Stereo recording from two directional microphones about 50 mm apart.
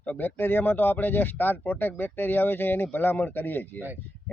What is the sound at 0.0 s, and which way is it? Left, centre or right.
Speech, left.